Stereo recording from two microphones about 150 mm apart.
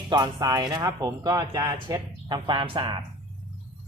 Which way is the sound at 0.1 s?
25° right (ahead or behind).